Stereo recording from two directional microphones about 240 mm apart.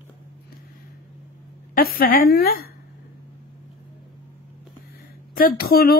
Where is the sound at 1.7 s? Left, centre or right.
Left.